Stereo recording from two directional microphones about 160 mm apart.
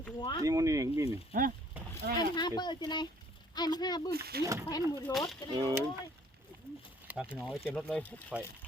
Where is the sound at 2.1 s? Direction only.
25° left (ahead or behind).